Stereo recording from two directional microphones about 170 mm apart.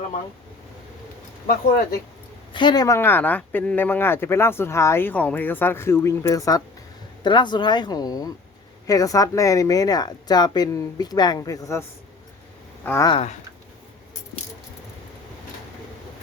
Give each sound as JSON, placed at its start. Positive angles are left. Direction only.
{"t": 2.5, "sound": "speech", "side_deg": 25}
{"t": 13.1, "sound": "speech", "side_deg": 35}